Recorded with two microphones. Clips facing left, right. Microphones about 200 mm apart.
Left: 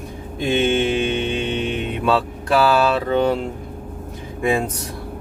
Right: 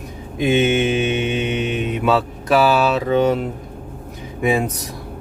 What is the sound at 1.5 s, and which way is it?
Mantra, 30° left (ahead or behind).